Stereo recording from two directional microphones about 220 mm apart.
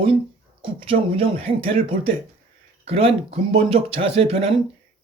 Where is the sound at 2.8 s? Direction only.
25° right (ahead or behind).